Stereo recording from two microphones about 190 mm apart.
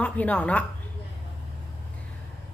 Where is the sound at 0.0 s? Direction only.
10° left (ahead or behind).